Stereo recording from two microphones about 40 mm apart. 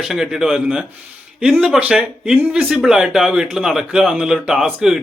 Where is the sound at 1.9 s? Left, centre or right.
Right.